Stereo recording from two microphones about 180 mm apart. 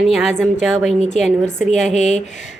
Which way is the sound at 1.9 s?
40° left (ahead or behind).